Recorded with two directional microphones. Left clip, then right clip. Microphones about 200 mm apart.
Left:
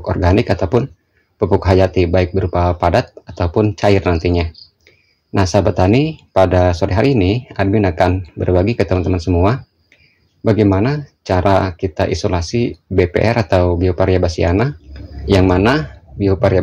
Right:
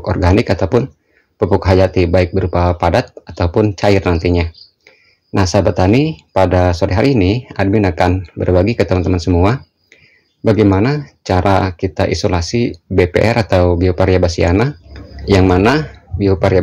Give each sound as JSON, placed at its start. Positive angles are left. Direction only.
{"t": 0.0, "sound": "speech", "side_deg": -10}